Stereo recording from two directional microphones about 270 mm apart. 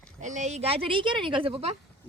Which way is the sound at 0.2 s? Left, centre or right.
Right.